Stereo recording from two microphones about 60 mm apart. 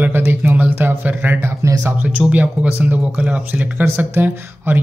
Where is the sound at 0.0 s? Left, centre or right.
Right.